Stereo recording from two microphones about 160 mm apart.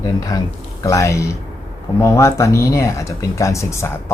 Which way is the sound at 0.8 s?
20° left (ahead or behind).